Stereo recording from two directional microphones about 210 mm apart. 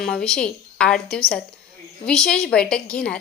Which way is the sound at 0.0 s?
5° left (ahead or behind).